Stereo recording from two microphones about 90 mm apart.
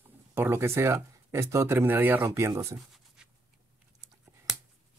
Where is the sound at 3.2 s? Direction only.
10° right (ahead or behind).